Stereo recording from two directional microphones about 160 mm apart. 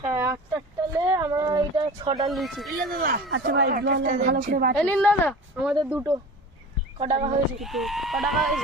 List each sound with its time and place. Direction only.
0.0 s a sound: 15° right (ahead or behind); by 2.3 s 30° right (ahead or behind)
2.3 s speech: centre (ahead or behind)
2.9 s a woman's voice: 65° right (ahead or behind)
4.9 s speech: 10° left (ahead or behind)
5.9 s speech: 10° right (ahead or behind)
7.0 s speech: 40° right (ahead or behind)
7.6 s speech: centre (ahead or behind)